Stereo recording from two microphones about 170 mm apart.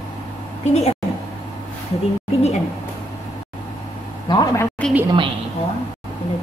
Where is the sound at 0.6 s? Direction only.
40° left (ahead or behind).